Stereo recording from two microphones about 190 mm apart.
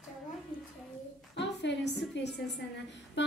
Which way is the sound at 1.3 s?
65° left (ahead or behind).